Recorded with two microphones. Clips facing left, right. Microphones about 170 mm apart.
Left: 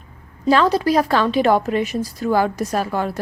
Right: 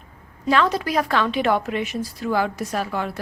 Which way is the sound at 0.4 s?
35° left (ahead or behind).